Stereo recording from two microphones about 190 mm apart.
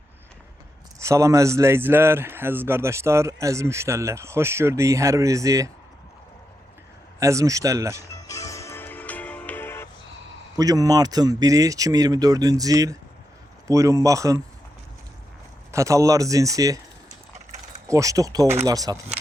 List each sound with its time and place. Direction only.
0.9 s a man's voice: 15° right (ahead or behind)
7.2 s a man's voice: 15° right (ahead or behind)
8.0 s music: 15° left (ahead or behind)
10.6 s a man's voice: 20° right (ahead or behind)
15.7 s a man's voice: 15° right (ahead or behind)
17.8 s a man's voice: 15° right (ahead or behind)